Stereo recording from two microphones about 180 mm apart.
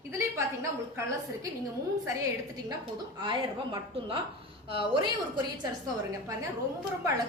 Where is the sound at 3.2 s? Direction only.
25° right (ahead or behind).